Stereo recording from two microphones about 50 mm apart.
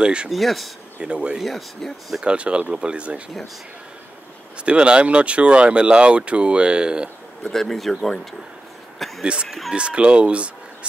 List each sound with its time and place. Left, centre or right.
0.0 s speech: centre
0.3 s speech: centre
1.0 s speech: centre
1.4 s speech: centre
2.2 s speech: right
4.6 s speech: centre
7.5 s speech: centre
9.2 s speech: right